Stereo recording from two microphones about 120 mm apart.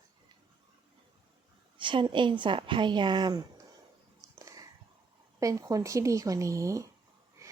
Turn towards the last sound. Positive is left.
turn(degrees=-25)  # may be behind; listen again after turning